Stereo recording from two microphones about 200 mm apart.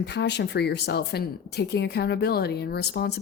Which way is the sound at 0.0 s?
60° left (ahead or behind).